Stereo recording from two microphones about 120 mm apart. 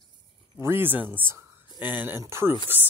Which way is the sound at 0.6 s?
20° right (ahead or behind).